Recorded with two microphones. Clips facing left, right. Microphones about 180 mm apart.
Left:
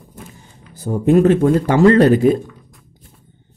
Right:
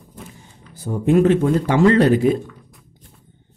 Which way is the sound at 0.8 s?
40° left (ahead or behind).